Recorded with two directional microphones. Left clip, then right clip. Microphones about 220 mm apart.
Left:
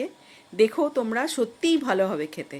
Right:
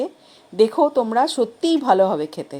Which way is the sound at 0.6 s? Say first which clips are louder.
Right 6 dB; 15° left (ahead or behind).